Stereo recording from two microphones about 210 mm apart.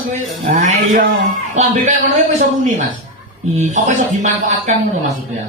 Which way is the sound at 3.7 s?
35° right (ahead or behind).